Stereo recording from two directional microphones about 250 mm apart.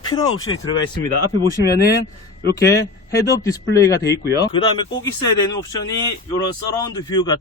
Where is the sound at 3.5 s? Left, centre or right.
Centre.